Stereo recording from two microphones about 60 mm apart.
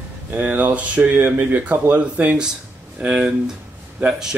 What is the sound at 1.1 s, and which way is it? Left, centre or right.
Speech, right.